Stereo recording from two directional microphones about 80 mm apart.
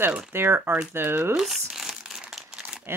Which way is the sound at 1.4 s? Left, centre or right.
Centre.